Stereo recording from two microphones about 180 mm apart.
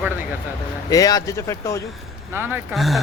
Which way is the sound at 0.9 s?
20° left (ahead or behind).